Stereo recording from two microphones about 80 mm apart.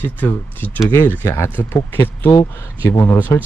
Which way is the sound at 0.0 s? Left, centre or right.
Left.